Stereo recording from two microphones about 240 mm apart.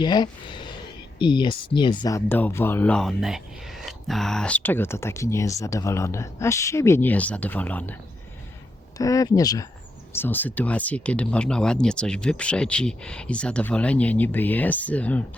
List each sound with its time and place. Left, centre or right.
0.0 s speech: centre
9.0 s speech: centre